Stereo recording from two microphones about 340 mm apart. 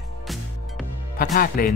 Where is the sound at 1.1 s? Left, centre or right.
Left.